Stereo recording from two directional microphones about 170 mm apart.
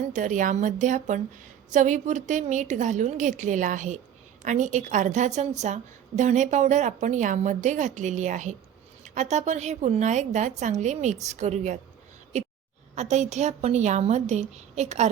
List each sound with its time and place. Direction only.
0.1 s a woman's voice: 50° right (ahead or behind)
12.3 s a sound: 40° right (ahead or behind)
13.0 s a woman's voice: 40° right (ahead or behind)